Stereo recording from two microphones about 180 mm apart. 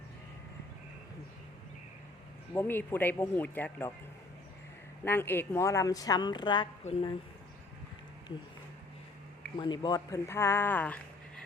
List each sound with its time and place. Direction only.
2.5 s speech: 10° left (ahead or behind)
5.0 s a woman's voice: 10° left (ahead or behind)
9.6 s speech: 25° left (ahead or behind); by 11.4 s 10° left (ahead or behind)